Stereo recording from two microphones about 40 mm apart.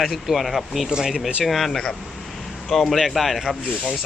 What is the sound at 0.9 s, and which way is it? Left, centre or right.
Speech, centre.